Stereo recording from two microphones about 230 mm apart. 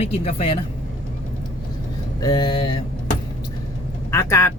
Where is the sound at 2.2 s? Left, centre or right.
Centre.